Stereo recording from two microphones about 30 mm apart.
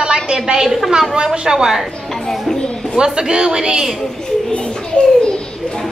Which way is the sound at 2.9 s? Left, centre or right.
Right.